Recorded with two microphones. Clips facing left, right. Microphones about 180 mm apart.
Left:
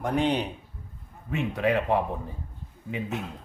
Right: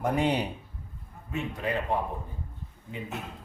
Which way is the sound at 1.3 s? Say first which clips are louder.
Left 6 dB; 70° left (ahead or behind).